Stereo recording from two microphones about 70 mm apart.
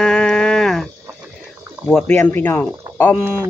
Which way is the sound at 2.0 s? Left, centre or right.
Left.